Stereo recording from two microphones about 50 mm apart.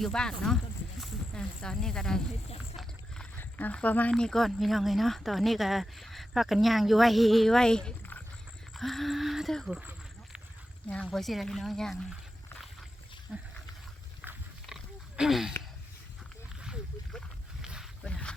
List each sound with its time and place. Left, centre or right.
0.0 s speech: centre
3.3 s a sound: left
3.8 s speech: left
4.1 s speech: centre
8.7 s a sound: centre
10.8 s speech: left
11.1 s speech: centre
13.3 s speech: centre
15.2 s wheeze: centre
17.6 s a sound: centre
18.1 s boat: left